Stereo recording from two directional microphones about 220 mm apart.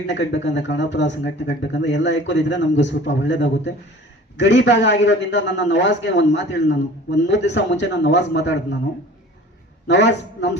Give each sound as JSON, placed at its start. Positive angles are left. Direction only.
{"t": 0.1, "sound": "a man's voice", "side_deg": 55}
{"t": 9.8, "sound": "a man's voice", "side_deg": 50}